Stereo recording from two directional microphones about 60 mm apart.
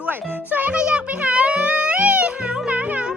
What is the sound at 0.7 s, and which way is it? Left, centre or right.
Music, centre.